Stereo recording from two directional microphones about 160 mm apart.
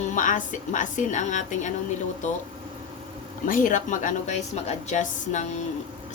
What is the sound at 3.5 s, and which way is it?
Speech, 55° left (ahead or behind).